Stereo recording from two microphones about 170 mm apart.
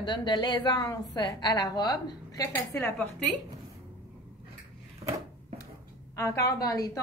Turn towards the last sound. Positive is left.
turn(degrees=20)  # may be behind; listen again after turning